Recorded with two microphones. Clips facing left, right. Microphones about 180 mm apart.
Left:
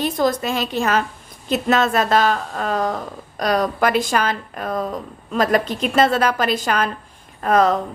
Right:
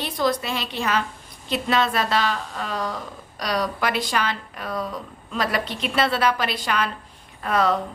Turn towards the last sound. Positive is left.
turn(degrees=45)  # may be behind; listen again after turning